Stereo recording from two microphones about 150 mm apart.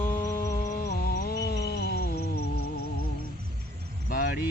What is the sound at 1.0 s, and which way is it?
Music, 80° left.